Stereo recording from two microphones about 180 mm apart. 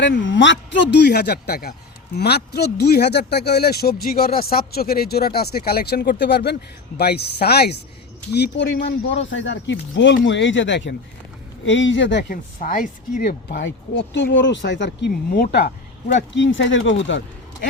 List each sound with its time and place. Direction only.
0.0 s speech: 85° left; by 7.8 s 65° left (ahead or behind)
8.3 s speech: 75° left (ahead or behind)
11.6 s speech: 90° left
12.3 s speech: 50° left (ahead or behind)
13.5 s speech: 85° left; by 15.7 s 60° left (ahead or behind)
16.1 s speech: 90° left